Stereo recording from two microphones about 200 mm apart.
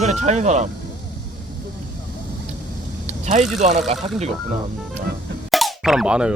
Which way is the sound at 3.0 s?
35° right (ahead or behind).